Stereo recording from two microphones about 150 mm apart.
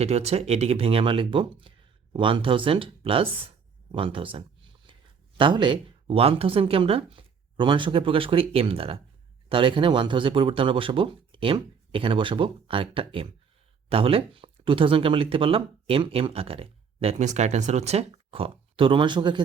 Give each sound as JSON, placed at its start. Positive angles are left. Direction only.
{"t": 0.0, "sound": "speech", "side_deg": -45}
{"t": 4.9, "sound": "a sound", "side_deg": -35}
{"t": 5.4, "sound": "speech", "side_deg": -35}